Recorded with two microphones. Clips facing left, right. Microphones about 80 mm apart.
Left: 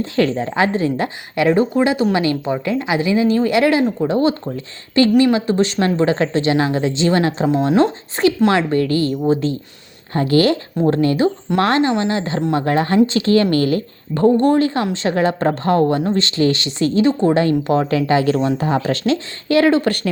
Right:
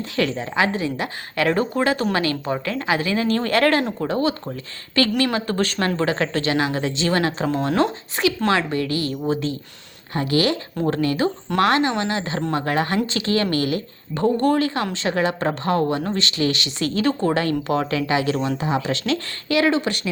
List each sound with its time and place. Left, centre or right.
0.0 s speech: left
1.4 s speech: centre
4.1 s speech: left
7.4 s speech: centre
7.8 s speech: left
8.7 s speech: left